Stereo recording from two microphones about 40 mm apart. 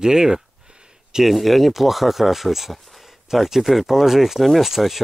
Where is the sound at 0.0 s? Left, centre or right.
Centre.